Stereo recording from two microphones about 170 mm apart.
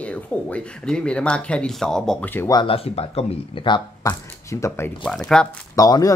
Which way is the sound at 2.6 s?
35° left (ahead or behind).